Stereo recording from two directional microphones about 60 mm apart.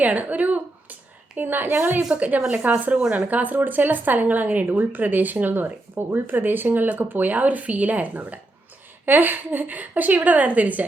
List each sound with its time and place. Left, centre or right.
0.0 s a woman's voice: right
2.0 s speech: right
3.2 s speech: right